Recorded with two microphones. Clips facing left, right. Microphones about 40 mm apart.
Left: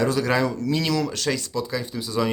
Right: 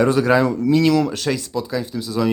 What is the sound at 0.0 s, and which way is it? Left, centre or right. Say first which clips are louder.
Speech: right 6 dB; right.